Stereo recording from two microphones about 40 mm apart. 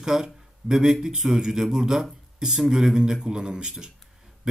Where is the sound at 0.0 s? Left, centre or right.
Centre.